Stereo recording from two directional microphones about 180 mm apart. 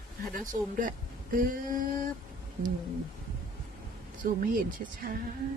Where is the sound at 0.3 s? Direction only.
50° right (ahead or behind).